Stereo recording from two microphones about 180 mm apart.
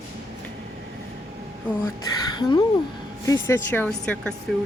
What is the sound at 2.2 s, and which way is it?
Speech, 25° left (ahead or behind).